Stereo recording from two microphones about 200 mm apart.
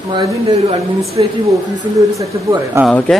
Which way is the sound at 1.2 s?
20° right (ahead or behind).